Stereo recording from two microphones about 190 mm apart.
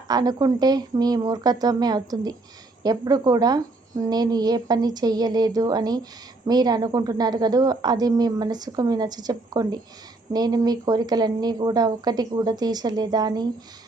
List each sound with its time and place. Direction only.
0.1 s a woman's voice: 20° right (ahead or behind)